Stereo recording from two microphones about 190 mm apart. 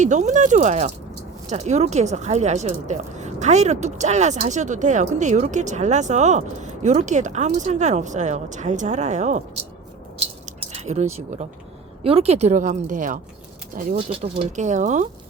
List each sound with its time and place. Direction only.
0.0 s speech: 40° right (ahead or behind)
10.4 s keys jangling: 35° right (ahead or behind)
12.0 s speech: 30° right (ahead or behind)
13.9 s speech: 30° right (ahead or behind)